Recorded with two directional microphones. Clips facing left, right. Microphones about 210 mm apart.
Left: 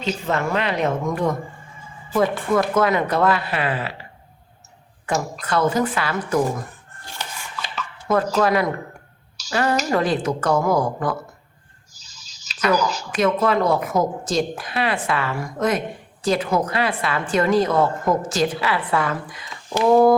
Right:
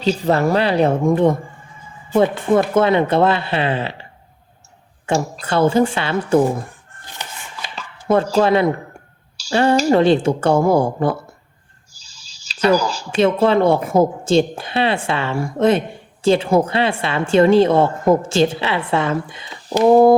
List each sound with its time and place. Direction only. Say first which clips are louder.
0.0 s a woman's voice: right 7 dB; 35° right (ahead or behind)
5.0 s a woman's voice: right 4 dB; 30° right (ahead or behind)
7.8 s a woman's voice: right 4 dB; 30° right (ahead or behind)
19.7 s a woman's voice: right 4 dB; 35° right (ahead or behind)